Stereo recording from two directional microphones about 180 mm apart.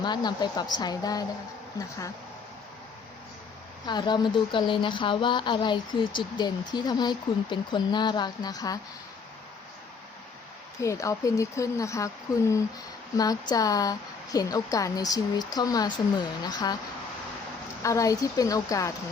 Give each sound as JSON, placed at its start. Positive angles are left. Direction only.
{"t": 0.0, "sound": "speech", "side_deg": 25}
{"t": 3.8, "sound": "speech", "side_deg": 25}
{"t": 10.8, "sound": "speech", "side_deg": 15}
{"t": 17.8, "sound": "speech", "side_deg": 20}